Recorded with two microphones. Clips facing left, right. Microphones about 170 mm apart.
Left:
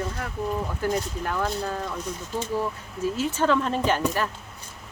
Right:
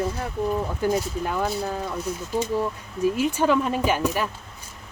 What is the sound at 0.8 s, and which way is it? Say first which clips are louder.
Speech: right 3 dB; 15° right (ahead or behind).